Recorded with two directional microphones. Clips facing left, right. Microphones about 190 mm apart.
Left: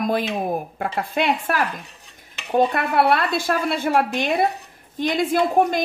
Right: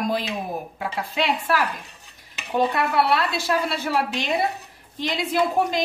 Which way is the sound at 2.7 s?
50° left (ahead or behind).